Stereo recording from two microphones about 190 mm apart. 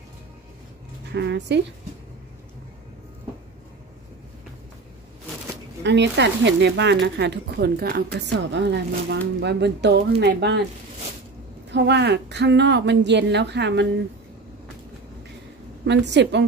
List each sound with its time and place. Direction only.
1.1 s speech: 65° right (ahead or behind)
5.9 s speech: 65° right (ahead or behind)
11.7 s speech: 65° right (ahead or behind)
15.8 s a woman's voice: 65° right (ahead or behind)